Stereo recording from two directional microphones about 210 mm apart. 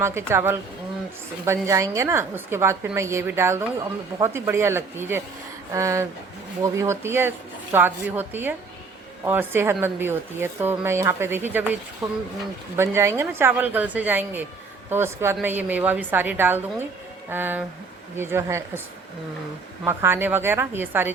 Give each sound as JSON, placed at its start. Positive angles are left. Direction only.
{"t": 0.0, "sound": "a woman's voice", "side_deg": -10}
{"t": 19.8, "sound": "a woman's voice", "side_deg": -10}